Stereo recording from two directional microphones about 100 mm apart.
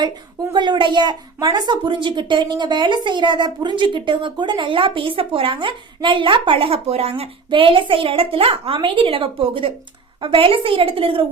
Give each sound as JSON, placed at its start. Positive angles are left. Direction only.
{"t": 0.5, "sound": "a woman's voice", "side_deg": -50}